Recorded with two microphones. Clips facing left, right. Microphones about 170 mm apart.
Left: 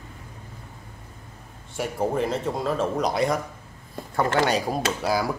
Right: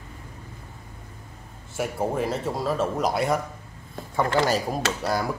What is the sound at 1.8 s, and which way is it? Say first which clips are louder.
Speech: left 1 dB; 5° right (ahead or behind).